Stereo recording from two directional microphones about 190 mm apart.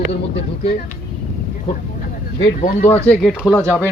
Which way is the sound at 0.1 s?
30° left (ahead or behind).